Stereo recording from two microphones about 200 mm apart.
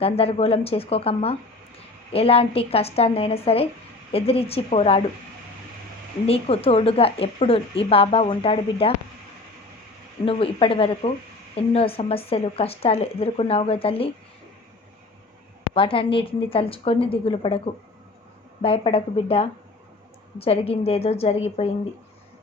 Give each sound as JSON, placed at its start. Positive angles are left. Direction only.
{"t": 0.0, "sound": "speech", "side_deg": 30}
{"t": 6.2, "sound": "speech", "side_deg": 30}
{"t": 10.2, "sound": "speech", "side_deg": 30}
{"t": 15.7, "sound": "speech", "side_deg": 25}
{"t": 18.6, "sound": "a woman's voice", "side_deg": 30}